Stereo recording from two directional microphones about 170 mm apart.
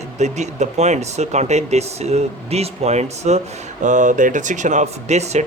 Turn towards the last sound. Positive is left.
turn(degrees=-40)  # may be behind; listen again after turning